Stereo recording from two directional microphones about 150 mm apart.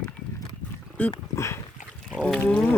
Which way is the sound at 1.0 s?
10° left (ahead or behind).